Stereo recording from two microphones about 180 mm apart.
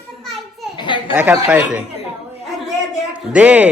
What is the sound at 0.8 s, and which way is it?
Children playing, 25° left (ahead or behind).